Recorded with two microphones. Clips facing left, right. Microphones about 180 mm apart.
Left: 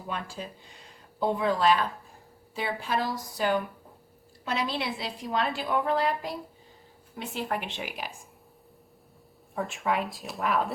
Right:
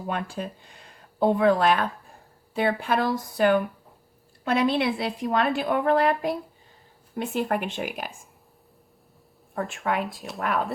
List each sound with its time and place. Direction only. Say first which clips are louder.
0.1 s a woman's voice: right 5 dB; 55° right (ahead or behind)
9.6 s speech: right 2 dB; centre (ahead or behind)